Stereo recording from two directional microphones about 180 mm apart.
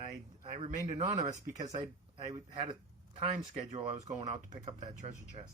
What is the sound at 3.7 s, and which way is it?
Speech, 40° right (ahead or behind).